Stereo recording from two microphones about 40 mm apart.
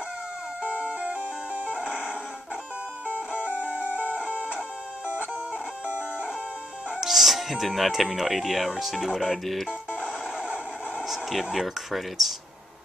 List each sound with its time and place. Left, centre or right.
0.7 s music: right
3.3 s music: right
3.5 s music: left
4.0 s music: left
5.0 s music: left
7.0 s speech: centre
10.0 s music: centre
11.1 s a sound: centre
11.5 s speech: centre